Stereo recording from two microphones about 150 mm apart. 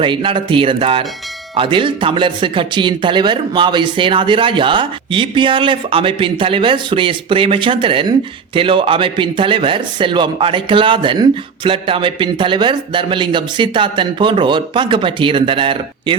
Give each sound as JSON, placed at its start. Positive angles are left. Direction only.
{"t": 0.0, "sound": "speech", "side_deg": -35}